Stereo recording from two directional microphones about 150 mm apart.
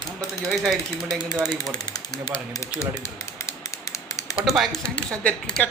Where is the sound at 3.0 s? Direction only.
20° left (ahead or behind).